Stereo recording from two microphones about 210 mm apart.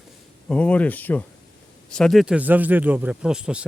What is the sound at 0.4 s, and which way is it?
Speech, 5° left (ahead or behind).